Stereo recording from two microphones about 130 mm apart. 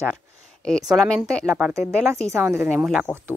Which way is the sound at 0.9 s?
5° left (ahead or behind).